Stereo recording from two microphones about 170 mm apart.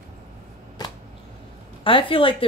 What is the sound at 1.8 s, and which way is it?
Speech, 30° left (ahead or behind).